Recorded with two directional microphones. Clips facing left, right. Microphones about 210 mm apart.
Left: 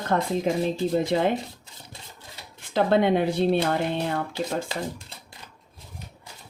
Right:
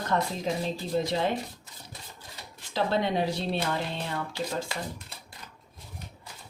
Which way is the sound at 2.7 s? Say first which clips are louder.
Left 7 dB; 55° left (ahead or behind).